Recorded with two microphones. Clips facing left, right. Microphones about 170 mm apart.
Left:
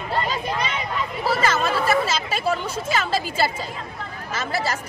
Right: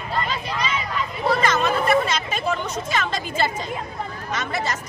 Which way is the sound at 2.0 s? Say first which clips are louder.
Left 1 dB; 5° left (ahead or behind).